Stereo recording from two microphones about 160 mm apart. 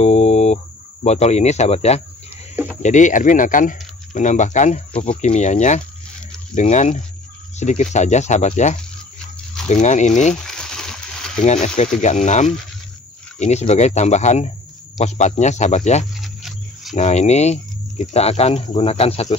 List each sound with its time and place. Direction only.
0.0 s a sound: 45° left (ahead or behind)
1.0 s speech: 45° left (ahead or behind)
5.0 s speech: 40° left (ahead or behind)
10.4 s a sound: 5° left (ahead or behind)
11.4 s speech: 45° left (ahead or behind)
16.1 s wild animals: centre (ahead or behind)
16.9 s speech: 45° left (ahead or behind)